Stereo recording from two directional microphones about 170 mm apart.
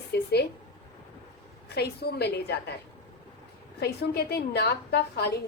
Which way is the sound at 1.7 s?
75° left (ahead or behind).